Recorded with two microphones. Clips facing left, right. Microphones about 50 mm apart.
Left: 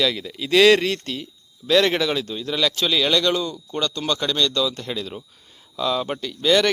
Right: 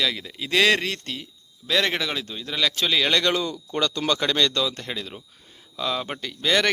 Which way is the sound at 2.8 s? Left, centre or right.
Right.